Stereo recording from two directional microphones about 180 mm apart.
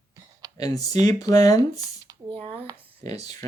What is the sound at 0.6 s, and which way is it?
Speech, 20° left (ahead or behind).